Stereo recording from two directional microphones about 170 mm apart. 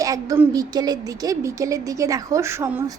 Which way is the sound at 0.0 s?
20° right (ahead or behind).